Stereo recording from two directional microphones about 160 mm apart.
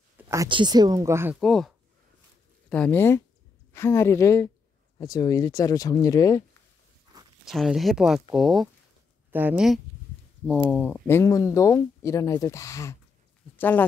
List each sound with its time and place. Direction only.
0.2 s a sound: 20° right (ahead or behind)
0.5 s speech: 30° right (ahead or behind)
1.3 s speech: 5° left (ahead or behind)
2.7 s speech: 10° left (ahead or behind)
7.4 s speech: centre (ahead or behind)
9.3 s speech: 10° right (ahead or behind)
10.4 s speech: 5° left (ahead or behind)